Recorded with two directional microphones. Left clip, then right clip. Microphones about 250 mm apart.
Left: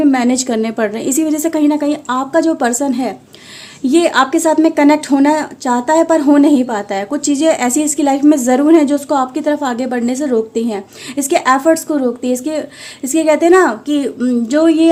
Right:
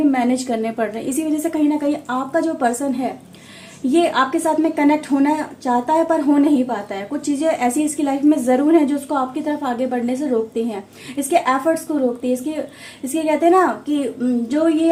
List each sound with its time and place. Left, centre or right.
0.1 s a woman's voice: left